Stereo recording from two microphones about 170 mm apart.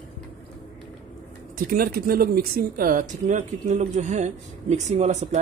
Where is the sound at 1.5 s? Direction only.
60° right (ahead or behind).